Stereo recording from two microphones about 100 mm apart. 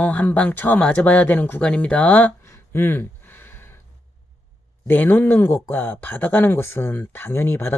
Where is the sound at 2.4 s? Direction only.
25° left (ahead or behind).